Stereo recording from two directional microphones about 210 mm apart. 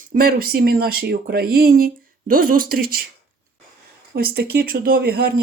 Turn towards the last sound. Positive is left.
turn(degrees=-50)  # may be behind; listen again after turning